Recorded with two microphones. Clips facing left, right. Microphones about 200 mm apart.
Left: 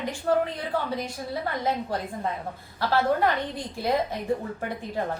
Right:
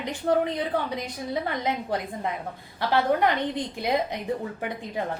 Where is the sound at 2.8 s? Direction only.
20° right (ahead or behind).